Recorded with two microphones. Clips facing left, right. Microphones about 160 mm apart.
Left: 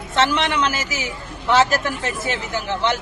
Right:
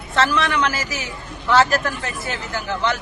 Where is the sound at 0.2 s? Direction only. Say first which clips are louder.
Even; 20° left (ahead or behind).